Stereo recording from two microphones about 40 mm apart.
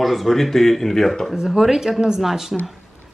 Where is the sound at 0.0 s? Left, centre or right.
Centre.